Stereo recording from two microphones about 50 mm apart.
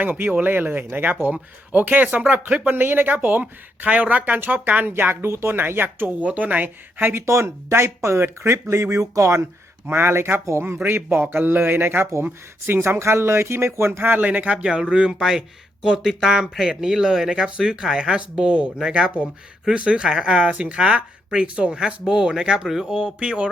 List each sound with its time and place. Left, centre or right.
0.0 s speech: right
3.8 s speech: right
6.2 s speech: right
7.3 s speech: right
8.5 s speech: right
9.8 s speech: right
14.2 s speech: right
14.7 s speech: centre